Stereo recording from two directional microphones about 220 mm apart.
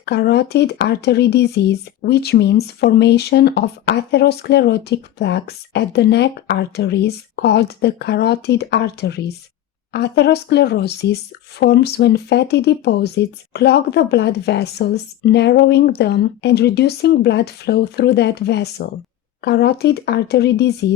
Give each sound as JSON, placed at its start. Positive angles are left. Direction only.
{"t": 0.0, "sound": "speech", "side_deg": 50}